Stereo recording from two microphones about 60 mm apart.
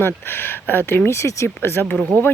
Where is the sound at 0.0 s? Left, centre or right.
Left.